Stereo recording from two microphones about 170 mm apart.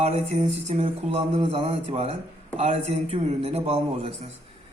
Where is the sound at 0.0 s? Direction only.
40° right (ahead or behind).